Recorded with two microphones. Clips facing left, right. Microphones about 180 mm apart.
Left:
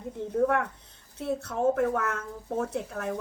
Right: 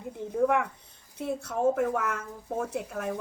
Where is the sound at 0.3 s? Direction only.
10° right (ahead or behind).